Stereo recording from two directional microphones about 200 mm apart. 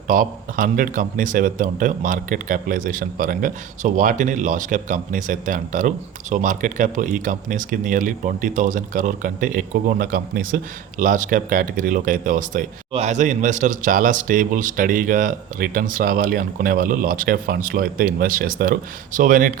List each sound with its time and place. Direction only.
0.1 s a man's voice: 40° right (ahead or behind)